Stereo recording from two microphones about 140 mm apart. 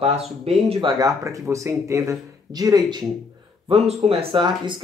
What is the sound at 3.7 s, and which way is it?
Speech, 45° right (ahead or behind).